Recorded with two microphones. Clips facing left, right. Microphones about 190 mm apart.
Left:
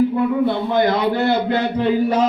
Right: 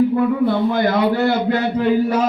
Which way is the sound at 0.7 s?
20° left (ahead or behind).